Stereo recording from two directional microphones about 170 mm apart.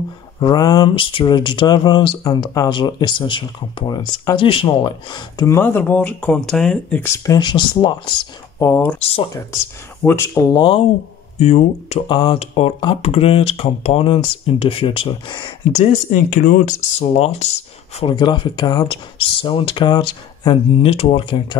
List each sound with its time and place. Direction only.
0.4 s speech: 25° left (ahead or behind)
5.6 s speech: 10° left (ahead or behind); by 8.1 s 25° left (ahead or behind)
8.5 s speech: 15° left (ahead or behind)
9.0 s speech: 35° left (ahead or behind)
10.0 s speech: 15° left (ahead or behind)
11.3 s speech: 40° left (ahead or behind)
15.7 s speech: 45° left (ahead or behind)
17.1 s speech: 40° left (ahead or behind)
17.9 s speech: 30° left (ahead or behind)